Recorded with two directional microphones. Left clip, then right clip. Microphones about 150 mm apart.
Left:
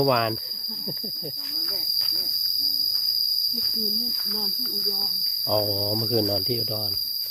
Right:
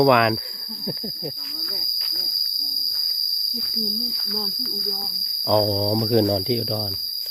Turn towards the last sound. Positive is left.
turn(degrees=-40)  # may be behind; listen again after turning